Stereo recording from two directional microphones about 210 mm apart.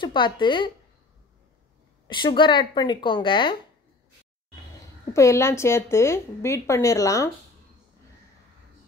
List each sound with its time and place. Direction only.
0.0 s speech: 20° left (ahead or behind)
2.0 s speech: 20° left (ahead or behind)
5.1 s a woman's voice: 15° left (ahead or behind)